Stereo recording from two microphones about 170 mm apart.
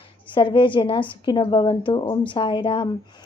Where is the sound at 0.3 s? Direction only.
30° left (ahead or behind).